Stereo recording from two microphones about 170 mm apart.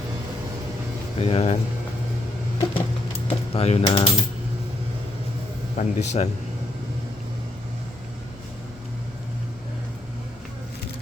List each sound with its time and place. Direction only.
1.2 s speech: 35° left (ahead or behind)
2.6 s a sound: 35° left (ahead or behind)
5.7 s speech: 40° left (ahead or behind)